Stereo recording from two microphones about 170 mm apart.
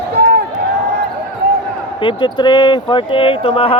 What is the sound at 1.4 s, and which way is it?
Basketball bounce, 65° right (ahead or behind).